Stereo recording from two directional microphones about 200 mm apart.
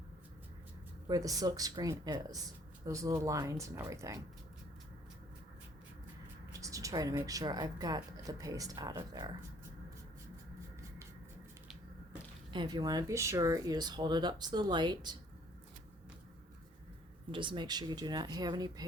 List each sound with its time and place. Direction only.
1.0 s speech: 15° right (ahead or behind)
6.5 s speech: 15° right (ahead or behind)
12.5 s speech: 20° right (ahead or behind)
17.3 s speech: 25° right (ahead or behind)